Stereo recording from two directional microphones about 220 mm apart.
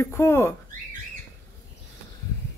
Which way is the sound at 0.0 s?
10° left (ahead or behind).